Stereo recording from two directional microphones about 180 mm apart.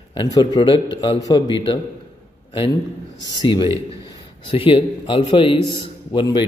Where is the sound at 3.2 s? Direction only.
25° left (ahead or behind).